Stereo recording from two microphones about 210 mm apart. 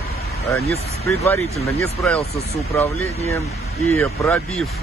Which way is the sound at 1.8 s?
5° left (ahead or behind).